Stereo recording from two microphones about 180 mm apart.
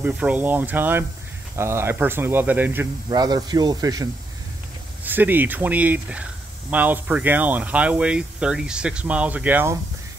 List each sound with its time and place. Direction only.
0.0 s speech: 10° right (ahead or behind)
3.1 s speech: 20° right (ahead or behind)
5.0 s speech: 10° right (ahead or behind)